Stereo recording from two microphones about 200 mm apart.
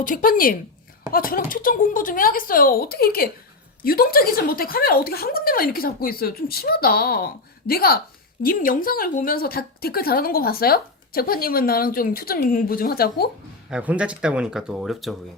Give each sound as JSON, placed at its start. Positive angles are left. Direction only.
{"t": 0.0, "sound": "a woman's voice", "side_deg": 45}
{"t": 13.7, "sound": "speech", "side_deg": -5}